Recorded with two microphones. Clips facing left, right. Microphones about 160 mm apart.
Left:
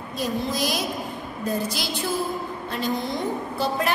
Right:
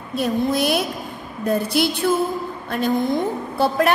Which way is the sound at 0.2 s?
60° right (ahead or behind).